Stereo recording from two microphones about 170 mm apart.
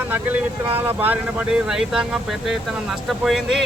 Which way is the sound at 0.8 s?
10° right (ahead or behind).